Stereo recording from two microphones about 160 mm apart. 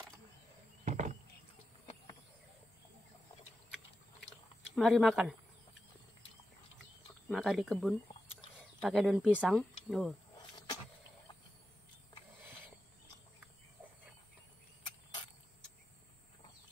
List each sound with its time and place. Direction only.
0.8 s vehicle: 45° right (ahead or behind)
4.7 s speech: centre (ahead or behind)
7.2 s speech: centre (ahead or behind)
10.3 s vehicle: 25° left (ahead or behind)